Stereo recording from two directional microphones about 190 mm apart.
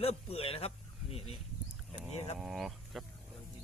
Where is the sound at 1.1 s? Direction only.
30° left (ahead or behind).